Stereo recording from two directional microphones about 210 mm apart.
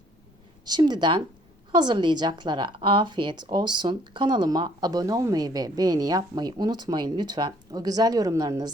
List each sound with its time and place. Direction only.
0.6 s a woman's voice: 20° right (ahead or behind)